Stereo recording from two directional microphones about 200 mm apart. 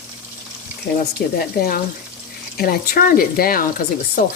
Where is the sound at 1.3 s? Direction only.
50° left (ahead or behind).